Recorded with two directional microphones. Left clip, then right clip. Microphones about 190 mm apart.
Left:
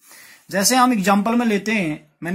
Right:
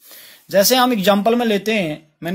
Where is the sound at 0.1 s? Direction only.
30° right (ahead or behind).